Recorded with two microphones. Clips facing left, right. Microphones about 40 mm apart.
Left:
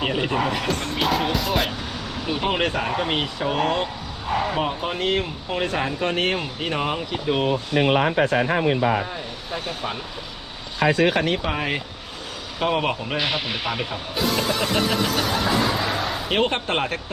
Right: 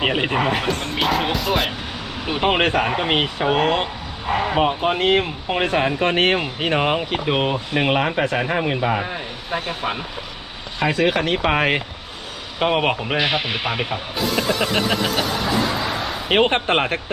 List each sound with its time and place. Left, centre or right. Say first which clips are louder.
0.0 s a man's voice: right 3 dB; right
0.9 s music: right 2 dB; centre
2.2 s speech: right 4 dB; right
8.1 s a man's voice: left 1 dB; right
11.0 s a man's voice: right 4 dB; right
11.4 s speech: right 7 dB; right
12.5 s a man's voice: right 3 dB; right
14.2 s music: right 1 dB; centre
16.3 s speech: right 6 dB; right